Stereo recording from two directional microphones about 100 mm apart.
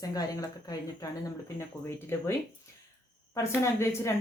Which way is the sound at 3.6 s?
25° left (ahead or behind).